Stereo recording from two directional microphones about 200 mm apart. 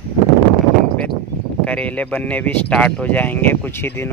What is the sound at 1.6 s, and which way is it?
Speech, 5° left (ahead or behind).